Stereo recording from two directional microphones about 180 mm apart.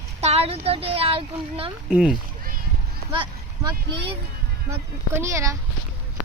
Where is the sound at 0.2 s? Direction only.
35° right (ahead or behind).